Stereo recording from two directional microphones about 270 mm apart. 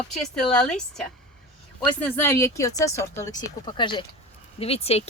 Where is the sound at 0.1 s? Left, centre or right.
Centre.